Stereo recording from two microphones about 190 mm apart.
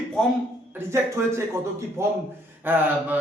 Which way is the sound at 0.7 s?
15° right (ahead or behind).